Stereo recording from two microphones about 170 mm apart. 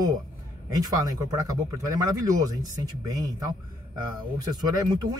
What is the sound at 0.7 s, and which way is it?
Speech, 20° right (ahead or behind).